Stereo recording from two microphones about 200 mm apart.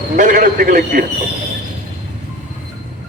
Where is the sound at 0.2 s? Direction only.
40° right (ahead or behind).